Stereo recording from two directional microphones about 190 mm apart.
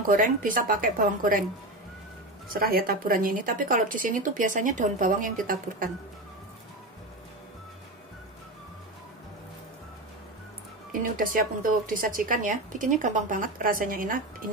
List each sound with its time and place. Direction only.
0.0 s a woman's voice: 45° right (ahead or behind)
2.5 s a woman's voice: 50° right (ahead or behind)
10.9 s a woman's voice: 45° right (ahead or behind)